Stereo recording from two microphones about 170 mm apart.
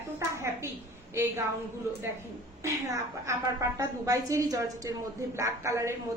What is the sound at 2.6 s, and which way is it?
Speech, 15° right (ahead or behind).